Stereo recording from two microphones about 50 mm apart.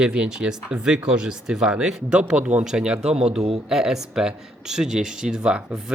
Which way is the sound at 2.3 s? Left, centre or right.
Right.